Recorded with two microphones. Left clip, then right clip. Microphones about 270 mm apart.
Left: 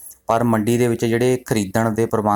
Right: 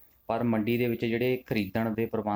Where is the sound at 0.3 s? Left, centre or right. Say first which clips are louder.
Left 11 dB; centre.